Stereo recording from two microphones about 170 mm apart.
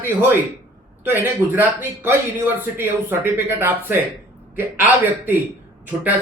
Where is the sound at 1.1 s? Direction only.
10° right (ahead or behind).